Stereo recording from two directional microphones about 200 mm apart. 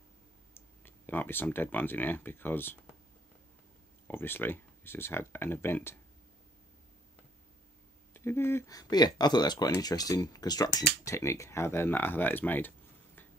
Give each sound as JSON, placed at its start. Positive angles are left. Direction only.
{"t": 0.6, "sound": "speech", "side_deg": 10}
{"t": 4.1, "sound": "speech", "side_deg": 10}
{"t": 8.1, "sound": "speech", "side_deg": 10}